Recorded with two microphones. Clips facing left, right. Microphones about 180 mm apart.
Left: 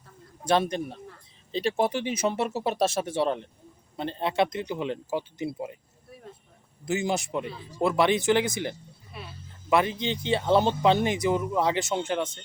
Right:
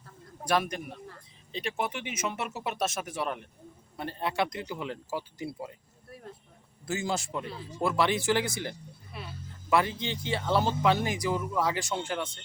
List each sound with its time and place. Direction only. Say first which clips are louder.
0.4 s speech: left 4 dB; 25° left (ahead or behind)
6.1 s a sound: even; centre (ahead or behind)
6.8 s speech: left 4 dB; 20° left (ahead or behind)
9.1 s speech: left 1 dB; centre (ahead or behind)
9.6 s speech: left 3 dB; 20° left (ahead or behind)